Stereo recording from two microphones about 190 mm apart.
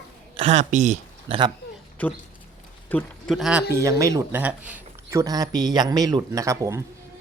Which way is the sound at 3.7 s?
15° right (ahead or behind).